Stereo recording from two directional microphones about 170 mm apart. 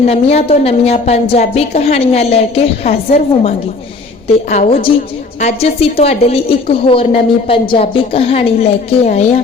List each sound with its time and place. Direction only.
0.0 s a woman's voice: 40° left (ahead or behind)